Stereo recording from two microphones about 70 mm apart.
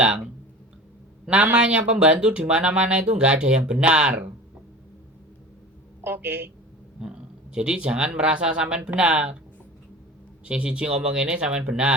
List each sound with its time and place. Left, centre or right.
1.3 s speech: centre
6.0 s a woman's voice: right
7.5 s speech: centre
10.4 s speech: centre